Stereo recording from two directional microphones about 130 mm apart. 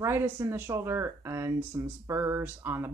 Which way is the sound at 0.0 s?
20° right (ahead or behind).